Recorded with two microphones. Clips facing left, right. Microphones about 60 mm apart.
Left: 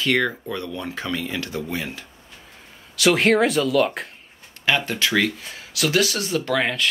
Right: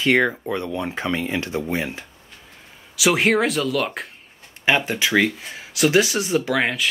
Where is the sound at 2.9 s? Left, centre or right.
Centre.